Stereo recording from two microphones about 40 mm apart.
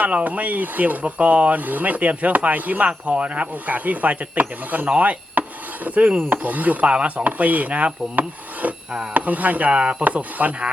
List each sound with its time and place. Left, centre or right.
0.0 s speech: right
6.3 s rub: right
6.9 s speech: right
7.3 s speech: right
10.0 s speech: right